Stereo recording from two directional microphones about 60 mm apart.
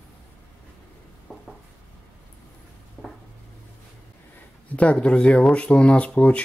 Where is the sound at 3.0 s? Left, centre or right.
Left.